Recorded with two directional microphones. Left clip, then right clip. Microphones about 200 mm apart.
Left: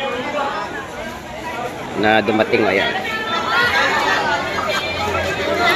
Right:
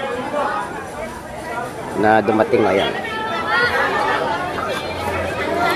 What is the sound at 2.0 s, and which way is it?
Speech, 10° right (ahead or behind).